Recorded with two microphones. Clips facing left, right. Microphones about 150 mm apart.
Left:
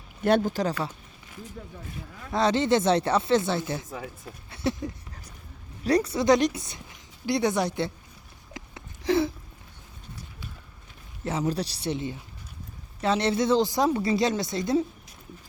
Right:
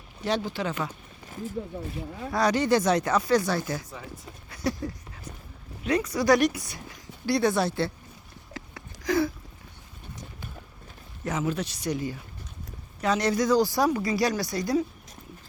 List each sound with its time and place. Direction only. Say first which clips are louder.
0.2 s speech: left 5 dB; 55° left (ahead or behind); by 0.9 s 35° left (ahead or behind)
2.0 s speech: right 7 dB; 30° right (ahead or behind)
2.3 s a woman's voice: left 1 dB; 25° left (ahead or behind)
5.8 s a woman's voice: left 2 dB; 35° left (ahead or behind); by 7.9 s 20° left (ahead or behind)
8.5 s a sound: right 1 dB; 25° left (ahead or behind)
11.3 s a woman's voice: left 1 dB; 35° left (ahead or behind)